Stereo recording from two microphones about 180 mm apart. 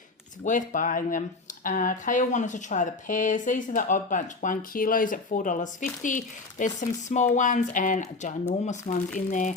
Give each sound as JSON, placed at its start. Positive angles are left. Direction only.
{"t": 0.4, "sound": "speech", "side_deg": 45}